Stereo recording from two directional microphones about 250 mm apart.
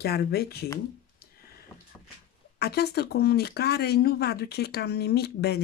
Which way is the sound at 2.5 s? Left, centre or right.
Left.